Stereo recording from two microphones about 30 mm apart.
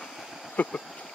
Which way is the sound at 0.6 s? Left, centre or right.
Left.